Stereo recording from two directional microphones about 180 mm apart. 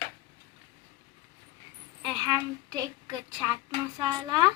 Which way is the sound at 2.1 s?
20° right (ahead or behind).